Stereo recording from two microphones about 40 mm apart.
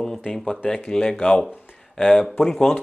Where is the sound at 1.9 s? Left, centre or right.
Centre.